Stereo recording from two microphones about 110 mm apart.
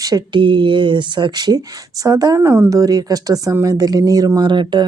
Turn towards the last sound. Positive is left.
turn(degrees=-45)  # may be behind; listen again after turning